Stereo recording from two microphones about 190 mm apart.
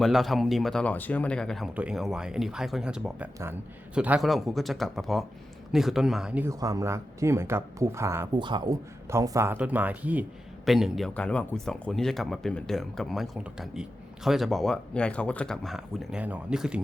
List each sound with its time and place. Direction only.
0.0 s speech: centre (ahead or behind)